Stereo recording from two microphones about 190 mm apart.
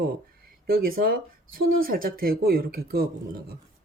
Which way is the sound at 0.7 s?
50° right (ahead or behind).